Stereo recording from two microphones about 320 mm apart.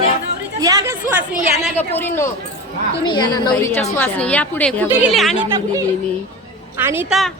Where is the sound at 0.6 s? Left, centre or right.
Centre.